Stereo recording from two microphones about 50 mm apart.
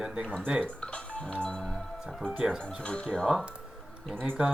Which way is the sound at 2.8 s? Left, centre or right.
Centre.